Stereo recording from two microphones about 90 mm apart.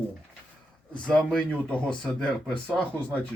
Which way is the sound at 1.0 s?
10° left (ahead or behind).